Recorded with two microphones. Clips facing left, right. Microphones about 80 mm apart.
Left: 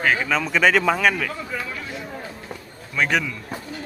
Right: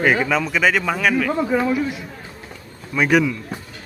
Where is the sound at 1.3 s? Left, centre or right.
Right.